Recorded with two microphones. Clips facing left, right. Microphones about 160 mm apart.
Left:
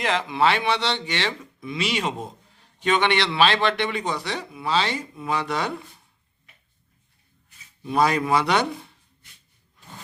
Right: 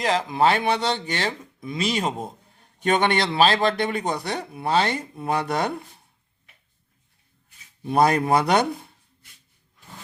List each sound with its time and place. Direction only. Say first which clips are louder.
0.0 s speech: right 1 dB; 35° right (ahead or behind)
7.8 s speech: right 2 dB; 50° right (ahead or behind)